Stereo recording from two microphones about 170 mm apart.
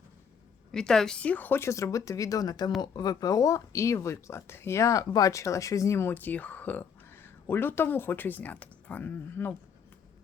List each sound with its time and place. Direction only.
0.7 s speech: 5° left (ahead or behind)